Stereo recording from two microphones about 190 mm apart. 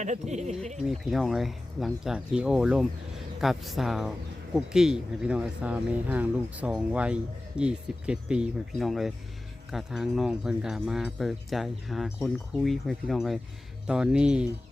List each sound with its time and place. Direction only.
0.0 s speech: 35° right (ahead or behind)
0.9 s speech: centre (ahead or behind)